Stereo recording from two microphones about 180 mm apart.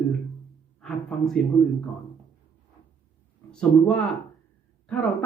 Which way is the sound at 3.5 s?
5° left (ahead or behind).